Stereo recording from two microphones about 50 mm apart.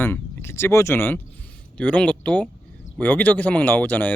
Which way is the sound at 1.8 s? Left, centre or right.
Left.